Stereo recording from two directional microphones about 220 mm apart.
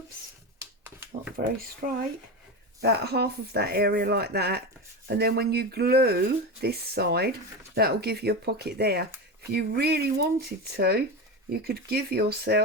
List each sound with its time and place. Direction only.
0.6 s shuffling cards: 10° right (ahead or behind)
2.8 s speech: 45° right (ahead or behind)